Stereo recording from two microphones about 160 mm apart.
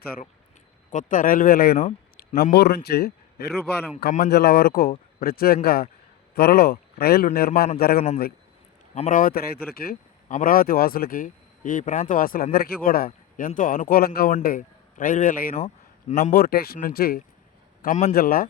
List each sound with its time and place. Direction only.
0.9 s a man's voice: 55° left (ahead or behind); by 8.0 s 70° left (ahead or behind)
9.0 s speech: 55° left (ahead or behind)
15.5 s a sound: 40° left (ahead or behind)
16.3 s speech: 70° left (ahead or behind)
17.8 s speech: 45° left (ahead or behind)
18.1 s speech: 70° left (ahead or behind)